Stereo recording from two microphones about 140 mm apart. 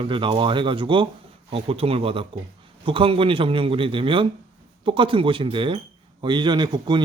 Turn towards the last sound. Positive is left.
turn(degrees=-30)  # may be behind; listen again after turning